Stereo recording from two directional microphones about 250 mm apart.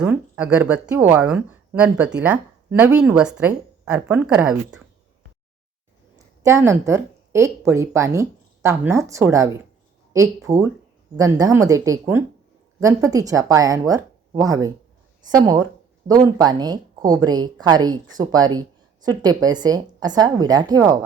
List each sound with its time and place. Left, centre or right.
0.0 s speech: centre
6.4 s speech: centre